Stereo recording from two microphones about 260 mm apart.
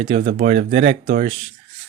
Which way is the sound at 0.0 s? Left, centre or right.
Right.